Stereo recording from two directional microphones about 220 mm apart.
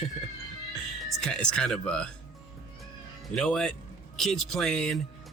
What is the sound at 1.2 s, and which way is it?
Speech, 5° left (ahead or behind).